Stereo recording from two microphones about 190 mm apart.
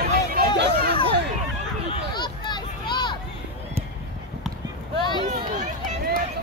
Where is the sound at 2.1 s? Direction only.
25° left (ahead or behind).